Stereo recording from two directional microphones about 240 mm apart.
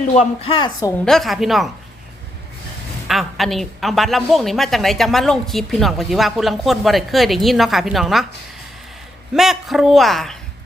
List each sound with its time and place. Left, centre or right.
0.1 s speech: left
1.0 s a woman's voice: centre
3.1 s a woman's voice: centre
9.3 s a woman's voice: centre